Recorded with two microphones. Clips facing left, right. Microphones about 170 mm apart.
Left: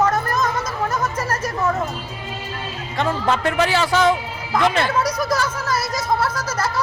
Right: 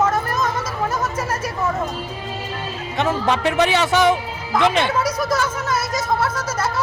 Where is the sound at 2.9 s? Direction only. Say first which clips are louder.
Right 1 dB; 15° right (ahead or behind).